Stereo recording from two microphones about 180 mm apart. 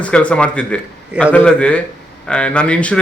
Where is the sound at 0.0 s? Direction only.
5° left (ahead or behind).